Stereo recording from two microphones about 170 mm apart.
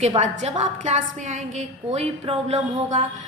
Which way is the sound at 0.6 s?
45° right (ahead or behind).